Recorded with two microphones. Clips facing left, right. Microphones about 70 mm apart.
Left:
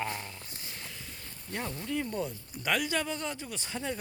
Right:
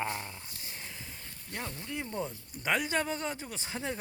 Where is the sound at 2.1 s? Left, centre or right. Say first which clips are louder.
Left 2 dB; right.